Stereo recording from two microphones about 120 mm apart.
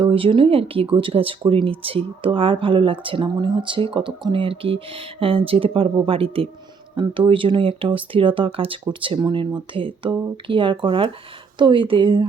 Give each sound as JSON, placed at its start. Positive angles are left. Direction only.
{"t": 0.0, "sound": "speech", "side_deg": -50}